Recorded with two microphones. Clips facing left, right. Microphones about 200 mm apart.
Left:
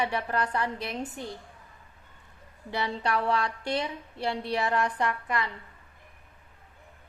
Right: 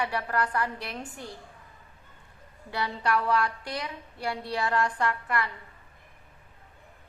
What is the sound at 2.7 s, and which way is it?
A woman's voice, 25° left (ahead or behind).